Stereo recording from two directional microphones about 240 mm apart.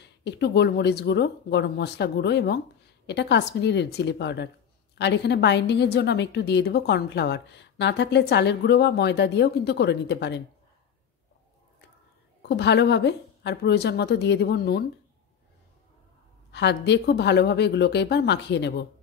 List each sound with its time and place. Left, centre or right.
0.0 s a woman's voice: left
12.4 s a woman's voice: left
16.5 s a woman's voice: left